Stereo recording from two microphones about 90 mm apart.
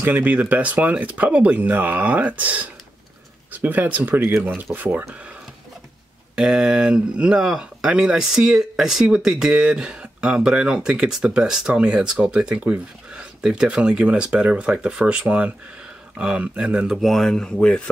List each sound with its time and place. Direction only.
0.0 s speech: 20° right (ahead or behind)
6.3 s speech: 10° right (ahead or behind); by 17.8 s 10° left (ahead or behind)